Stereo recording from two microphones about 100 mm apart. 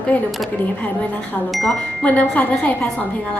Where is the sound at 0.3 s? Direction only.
Centre (ahead or behind).